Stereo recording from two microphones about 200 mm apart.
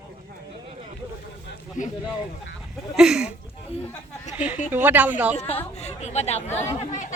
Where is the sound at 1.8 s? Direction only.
40° left (ahead or behind).